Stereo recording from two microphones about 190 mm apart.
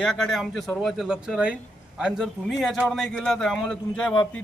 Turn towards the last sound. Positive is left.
turn(degrees=5)  # may be behind; listen again after turning